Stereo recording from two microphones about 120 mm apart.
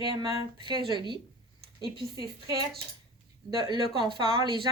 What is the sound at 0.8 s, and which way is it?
A woman's voice, 40° right (ahead or behind).